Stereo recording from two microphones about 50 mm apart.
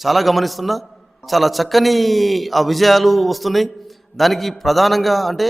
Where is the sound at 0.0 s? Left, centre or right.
Centre.